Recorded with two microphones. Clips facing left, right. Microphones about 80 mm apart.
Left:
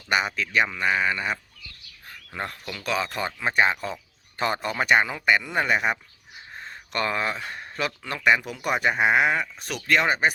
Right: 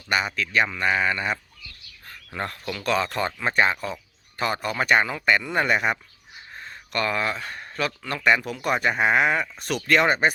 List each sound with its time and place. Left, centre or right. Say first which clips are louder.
0.1 s speech: even; centre
6.5 s speech: right 1 dB; left; by 10.3 s centre